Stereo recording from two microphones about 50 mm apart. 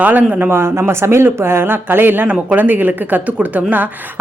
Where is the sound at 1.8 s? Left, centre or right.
Right.